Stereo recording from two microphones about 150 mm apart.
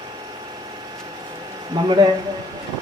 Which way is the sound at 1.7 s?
30° right (ahead or behind).